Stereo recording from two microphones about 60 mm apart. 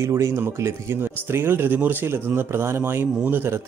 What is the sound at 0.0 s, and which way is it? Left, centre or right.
Speech, right.